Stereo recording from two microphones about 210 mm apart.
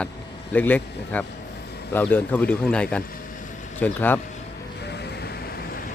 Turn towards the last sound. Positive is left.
turn(degrees=10)  # may be behind; listen again after turning